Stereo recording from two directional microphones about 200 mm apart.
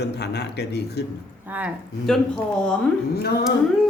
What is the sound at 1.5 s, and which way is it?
Speech, 10° right (ahead or behind).